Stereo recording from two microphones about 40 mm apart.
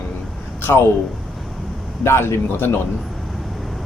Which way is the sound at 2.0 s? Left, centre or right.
Left.